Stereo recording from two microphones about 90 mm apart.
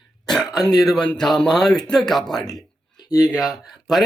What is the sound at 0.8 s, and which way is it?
Speech, centre (ahead or behind).